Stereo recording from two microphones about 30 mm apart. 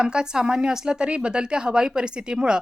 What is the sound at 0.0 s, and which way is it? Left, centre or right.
A woman's voice, right.